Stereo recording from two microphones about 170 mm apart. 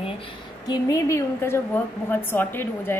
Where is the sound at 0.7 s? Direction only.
20° left (ahead or behind).